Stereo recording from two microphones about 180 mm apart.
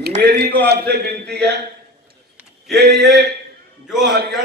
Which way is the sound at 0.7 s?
65° right (ahead or behind).